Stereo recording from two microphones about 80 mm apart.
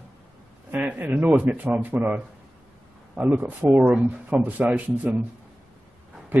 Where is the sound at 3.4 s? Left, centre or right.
Right.